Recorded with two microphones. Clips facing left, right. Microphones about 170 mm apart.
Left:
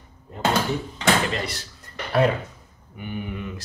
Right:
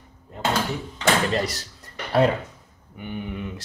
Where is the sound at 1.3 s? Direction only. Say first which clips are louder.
Right 4 dB; 40° right (ahead or behind).